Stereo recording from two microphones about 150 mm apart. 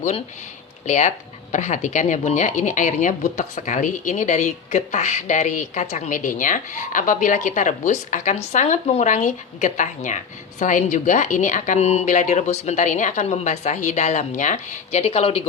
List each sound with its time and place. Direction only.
0.9 s a woman's voice: 55° left (ahead or behind)